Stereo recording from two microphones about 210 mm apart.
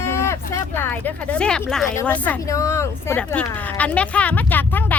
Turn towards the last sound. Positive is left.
turn(degrees=10)  # may be behind; listen again after turning